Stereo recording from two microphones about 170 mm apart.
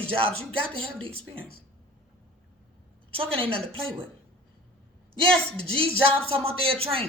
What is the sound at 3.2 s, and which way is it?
Speech, 30° right (ahead or behind).